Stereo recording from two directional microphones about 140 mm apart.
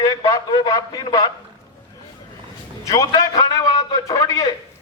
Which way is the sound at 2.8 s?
25° left (ahead or behind).